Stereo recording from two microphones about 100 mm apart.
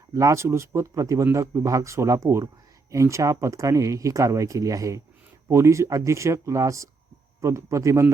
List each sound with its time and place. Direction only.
0.1 s speech: 30° right (ahead or behind)